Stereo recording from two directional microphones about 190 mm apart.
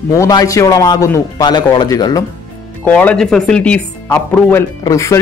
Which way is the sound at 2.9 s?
5° left (ahead or behind).